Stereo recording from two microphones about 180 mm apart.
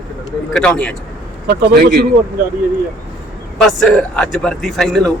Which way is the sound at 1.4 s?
55° right (ahead or behind).